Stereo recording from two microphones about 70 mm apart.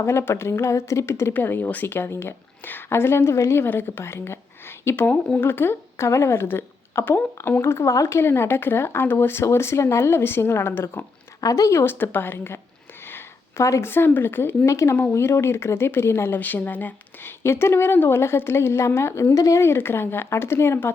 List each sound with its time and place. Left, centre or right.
0.0 s speech: left
7.9 s speech: left
11.3 s speech: left
11.8 s speech: left
13.1 s a sound: left
13.9 s speech: left
14.7 s speech: left
17.4 s speech: left